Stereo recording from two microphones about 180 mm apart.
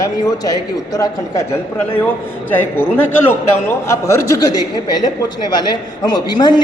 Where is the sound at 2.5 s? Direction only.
10° left (ahead or behind).